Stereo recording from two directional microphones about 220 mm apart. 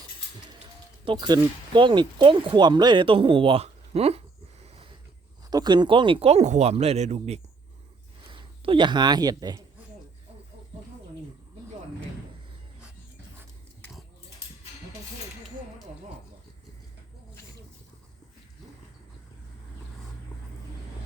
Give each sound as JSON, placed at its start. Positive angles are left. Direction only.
{"t": 1.0, "sound": "speech", "side_deg": -20}
{"t": 4.6, "sound": "a sound", "side_deg": -25}
{"t": 5.5, "sound": "speech", "side_deg": -20}